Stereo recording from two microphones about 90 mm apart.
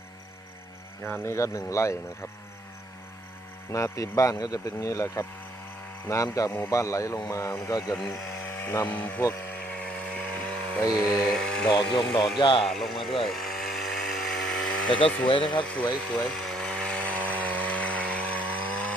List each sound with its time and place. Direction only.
1.0 s speech: 25° left (ahead or behind)
3.7 s speech: 35° left (ahead or behind)
7.9 s speech: 5° left (ahead or behind)
8.4 s speech: 25° left (ahead or behind)
9.5 s vehicle: 15° left (ahead or behind)
11.3 s speech: 5° left (ahead or behind)
11.7 s speech: 55° left (ahead or behind)
12.4 s speech: 70° left (ahead or behind)
12.6 s speech: 5° left (ahead or behind)
13.2 s vehicle: centre (ahead or behind)
15.0 s speech: 75° left (ahead or behind)
15.6 s speech: 15° left (ahead or behind)
16.1 s chainsaw: 10° left (ahead or behind)